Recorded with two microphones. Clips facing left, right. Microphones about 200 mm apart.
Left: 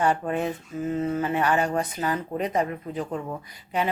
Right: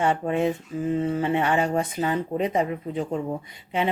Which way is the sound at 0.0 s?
25° right (ahead or behind).